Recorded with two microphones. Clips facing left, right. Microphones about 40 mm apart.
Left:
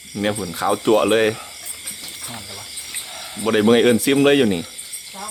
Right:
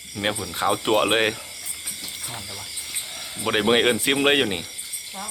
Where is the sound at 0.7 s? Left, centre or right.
Centre.